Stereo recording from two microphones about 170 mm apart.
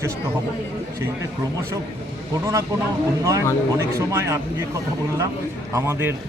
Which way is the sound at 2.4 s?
15° right (ahead or behind).